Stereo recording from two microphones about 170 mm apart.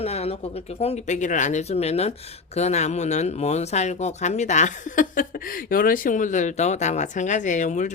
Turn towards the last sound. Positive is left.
turn(degrees=45)  # may be behind; listen again after turning